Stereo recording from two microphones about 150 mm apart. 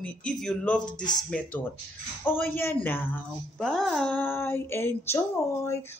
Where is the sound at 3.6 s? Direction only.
Centre (ahead or behind).